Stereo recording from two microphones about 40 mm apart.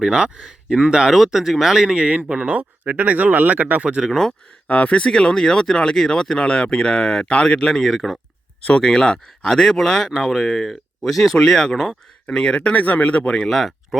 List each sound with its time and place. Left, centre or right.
0.0 s speech: centre
1.1 s speech: centre
2.0 s speech: right
4.7 s speech: left
5.0 s speech: centre
8.8 s speech: centre
10.1 s speech: centre
10.5 s speech: centre
12.3 s speech: centre
12.7 s speech: left
13.3 s speech: centre
13.6 s speech: centre